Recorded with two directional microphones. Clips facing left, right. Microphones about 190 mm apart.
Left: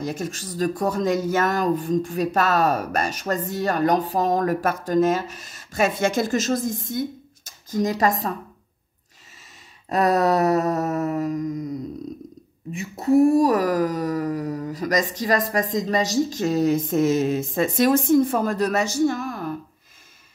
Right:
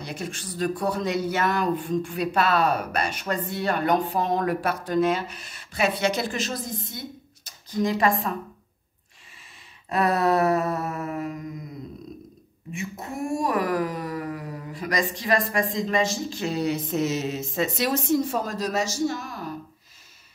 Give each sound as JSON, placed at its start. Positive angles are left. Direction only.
{"t": 0.0, "sound": "speech", "side_deg": 45}
{"t": 9.8, "sound": "speech", "side_deg": 40}
{"t": 12.7, "sound": "speech", "side_deg": 35}